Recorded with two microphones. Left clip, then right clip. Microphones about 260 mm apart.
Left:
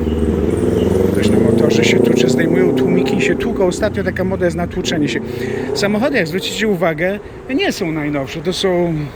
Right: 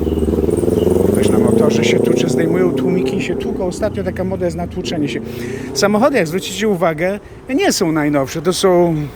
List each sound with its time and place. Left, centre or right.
0.8 s a sound: right
1.6 s speech: centre
5.9 s speech: centre